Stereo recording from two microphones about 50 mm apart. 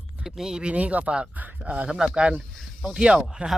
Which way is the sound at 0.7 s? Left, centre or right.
Right.